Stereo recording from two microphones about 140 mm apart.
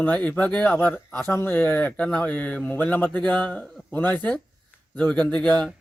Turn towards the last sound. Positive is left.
turn(degrees=10)  # may be behind; listen again after turning